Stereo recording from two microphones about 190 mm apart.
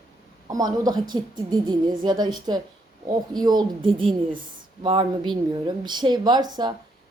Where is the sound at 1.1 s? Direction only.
25° right (ahead or behind).